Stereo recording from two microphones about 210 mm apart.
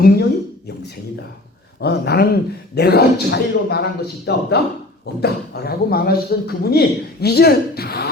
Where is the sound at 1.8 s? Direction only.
50° left (ahead or behind).